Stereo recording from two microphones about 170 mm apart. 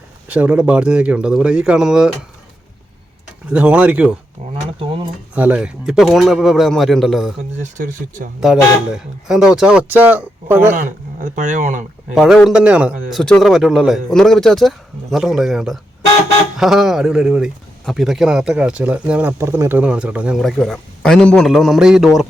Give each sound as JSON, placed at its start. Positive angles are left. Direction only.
{"t": 0.3, "sound": "speech", "side_deg": -10}
{"t": 3.5, "sound": "speech", "side_deg": -5}
{"t": 5.3, "sound": "speech", "side_deg": -10}
{"t": 7.6, "sound": "speech", "side_deg": -50}
{"t": 9.2, "sound": "speech", "side_deg": -5}
{"t": 11.2, "sound": "speech", "side_deg": -50}
{"t": 12.1, "sound": "speech", "side_deg": 0}